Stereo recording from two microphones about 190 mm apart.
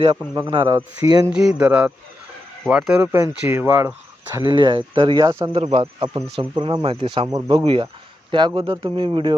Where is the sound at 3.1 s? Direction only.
15° right (ahead or behind).